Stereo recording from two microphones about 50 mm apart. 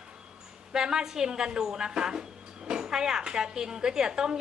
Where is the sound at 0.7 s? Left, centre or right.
Centre.